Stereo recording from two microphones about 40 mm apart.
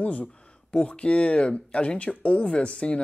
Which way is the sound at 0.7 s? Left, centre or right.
Left.